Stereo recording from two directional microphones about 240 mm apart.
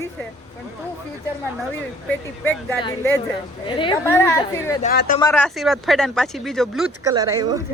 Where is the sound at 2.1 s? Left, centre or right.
Centre.